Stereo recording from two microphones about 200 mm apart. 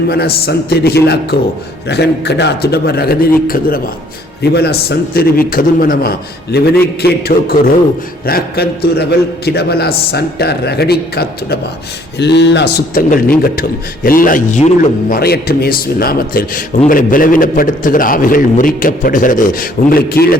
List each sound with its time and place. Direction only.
0.1 s speech: 50° left (ahead or behind); by 14.9 s 35° left (ahead or behind)
15.1 s speech: 50° left (ahead or behind)